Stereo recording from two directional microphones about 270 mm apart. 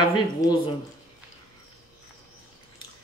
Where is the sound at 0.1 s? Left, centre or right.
Centre.